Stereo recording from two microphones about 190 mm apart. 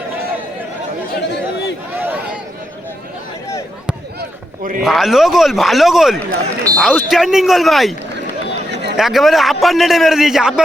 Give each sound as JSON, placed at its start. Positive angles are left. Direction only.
{"t": 1.1, "sound": "chatter", "side_deg": 60}
{"t": 2.0, "sound": "a sound", "side_deg": -10}
{"t": 4.2, "sound": "run", "side_deg": -45}
{"t": 4.8, "sound": "a man's voice", "side_deg": 0}
{"t": 8.7, "sound": "a sound", "side_deg": -65}
{"t": 9.0, "sound": "a man's voice", "side_deg": 0}